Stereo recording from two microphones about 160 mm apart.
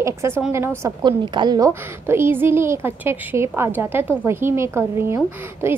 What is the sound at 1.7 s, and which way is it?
A woman's voice, 15° right (ahead or behind).